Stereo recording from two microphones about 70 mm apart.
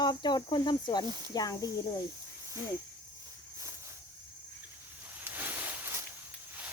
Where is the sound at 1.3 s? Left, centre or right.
Left.